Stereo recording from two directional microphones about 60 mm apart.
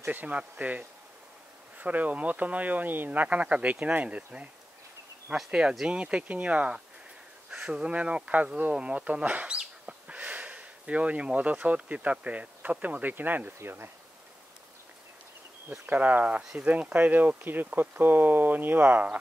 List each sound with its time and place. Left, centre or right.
0.0 s speech: right
5.5 s speech: centre; by 13.9 s right
15.8 s speech: right